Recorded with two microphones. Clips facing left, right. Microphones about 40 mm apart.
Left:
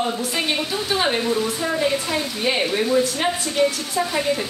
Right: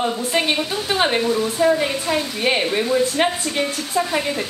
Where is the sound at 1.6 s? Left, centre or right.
Right.